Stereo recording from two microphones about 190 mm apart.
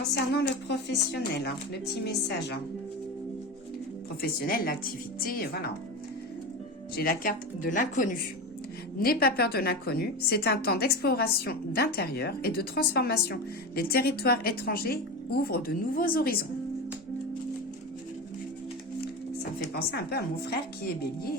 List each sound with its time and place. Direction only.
0.7 s speech: 60° left (ahead or behind)
4.2 s a woman's voice: 50° left (ahead or behind)
6.9 s a woman's voice: 50° left (ahead or behind)
19.5 s speech: 55° left (ahead or behind)